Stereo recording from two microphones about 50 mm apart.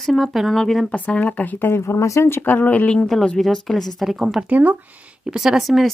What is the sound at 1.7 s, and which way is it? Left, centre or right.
Speech, left.